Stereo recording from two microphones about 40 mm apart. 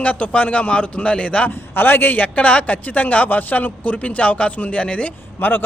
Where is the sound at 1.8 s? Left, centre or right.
Left.